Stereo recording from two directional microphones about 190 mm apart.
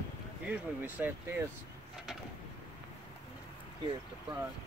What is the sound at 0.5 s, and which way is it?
Speech, 10° right (ahead or behind).